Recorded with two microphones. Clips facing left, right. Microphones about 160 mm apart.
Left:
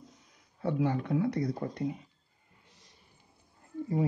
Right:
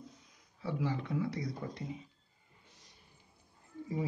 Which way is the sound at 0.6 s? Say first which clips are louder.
Left 6 dB; 55° left (ahead or behind).